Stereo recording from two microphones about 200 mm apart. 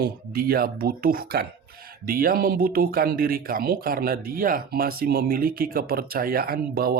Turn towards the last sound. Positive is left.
turn(degrees=-50)  # may be behind; listen again after turning